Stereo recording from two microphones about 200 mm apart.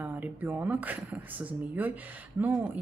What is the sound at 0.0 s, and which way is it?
Speech, 10° right (ahead or behind).